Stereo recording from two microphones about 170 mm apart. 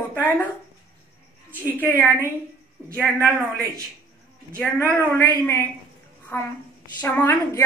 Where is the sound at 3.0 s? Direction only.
5° left (ahead or behind).